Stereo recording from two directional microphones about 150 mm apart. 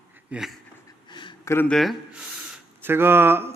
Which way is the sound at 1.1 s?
30° left (ahead or behind).